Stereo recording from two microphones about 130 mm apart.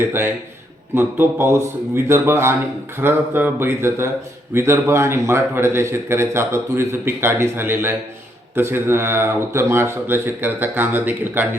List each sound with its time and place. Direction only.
0.0 s a man's voice: 15° right (ahead or behind)